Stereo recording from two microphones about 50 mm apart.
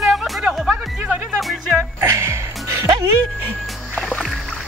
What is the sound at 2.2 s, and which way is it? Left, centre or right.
Music, right.